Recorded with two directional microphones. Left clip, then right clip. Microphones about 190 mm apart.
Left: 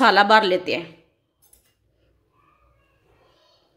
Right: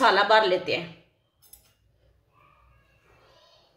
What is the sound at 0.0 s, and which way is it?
Speech, 55° left (ahead or behind).